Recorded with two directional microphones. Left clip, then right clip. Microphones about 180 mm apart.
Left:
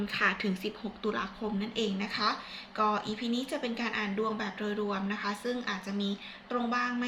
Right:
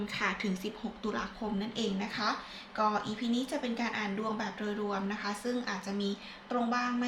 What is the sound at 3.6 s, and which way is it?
A woman's voice, 15° right (ahead or behind).